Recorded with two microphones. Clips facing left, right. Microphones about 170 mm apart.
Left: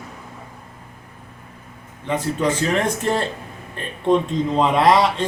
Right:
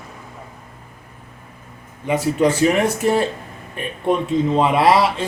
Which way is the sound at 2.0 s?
10° right (ahead or behind).